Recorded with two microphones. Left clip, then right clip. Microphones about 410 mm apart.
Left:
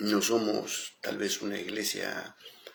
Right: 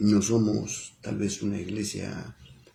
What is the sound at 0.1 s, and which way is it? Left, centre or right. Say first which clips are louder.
Speech: even; right.